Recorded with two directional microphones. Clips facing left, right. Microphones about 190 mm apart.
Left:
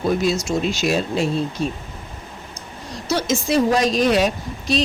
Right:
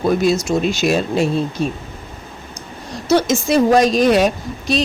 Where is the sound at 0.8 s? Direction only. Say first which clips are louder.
Right 4 dB; 55° right (ahead or behind).